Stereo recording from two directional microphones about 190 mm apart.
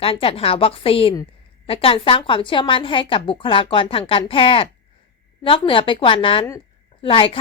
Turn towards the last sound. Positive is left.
turn(degrees=30)  # may be behind; listen again after turning